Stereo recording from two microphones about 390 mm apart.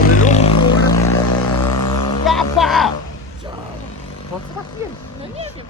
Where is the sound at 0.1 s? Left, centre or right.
Centre.